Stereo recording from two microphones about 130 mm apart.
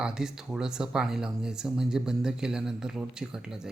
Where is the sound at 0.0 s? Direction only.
5° right (ahead or behind).